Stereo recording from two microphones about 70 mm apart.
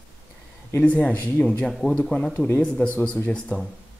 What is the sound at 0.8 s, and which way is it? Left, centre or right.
Speech, left.